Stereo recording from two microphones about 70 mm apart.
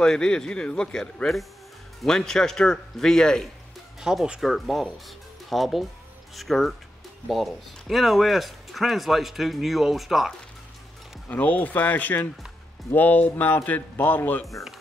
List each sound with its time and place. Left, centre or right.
0.0 s speech: centre
4.0 s speech: centre
11.2 s speech: left